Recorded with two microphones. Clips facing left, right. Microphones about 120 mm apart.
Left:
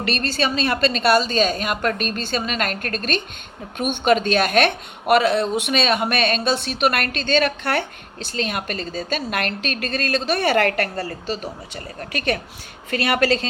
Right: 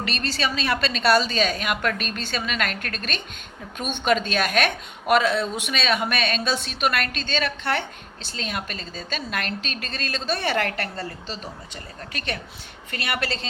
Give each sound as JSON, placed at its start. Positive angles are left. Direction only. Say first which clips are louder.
{"t": 0.0, "sound": "a woman's voice", "louder": "left 4 dB", "side_deg": 50}
{"t": 4.0, "sound": "speech", "louder": "left 4 dB", "side_deg": 55}
{"t": 12.9, "sound": "a woman's voice", "louder": "left 9 dB", "side_deg": 90}